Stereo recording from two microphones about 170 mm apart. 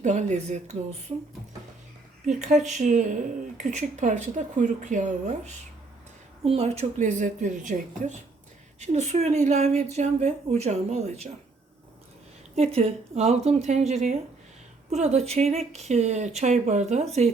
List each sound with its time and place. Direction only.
0.0 s a woman's voice: 45° right (ahead or behind)
2.2 s a woman's voice: 45° right (ahead or behind)
6.4 s a woman's voice: 35° right (ahead or behind)
8.8 s speech: 40° right (ahead or behind)
12.5 s speech: 35° right (ahead or behind)